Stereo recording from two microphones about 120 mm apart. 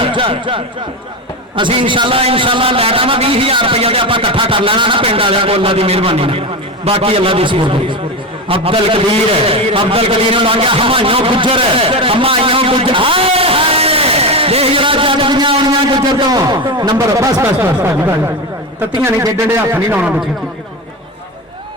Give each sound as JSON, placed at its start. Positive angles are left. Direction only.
{"t": 0.0, "sound": "a sound", "side_deg": -45}
{"t": 1.5, "sound": "a man's voice", "side_deg": -45}
{"t": 19.0, "sound": "a man's voice", "side_deg": -20}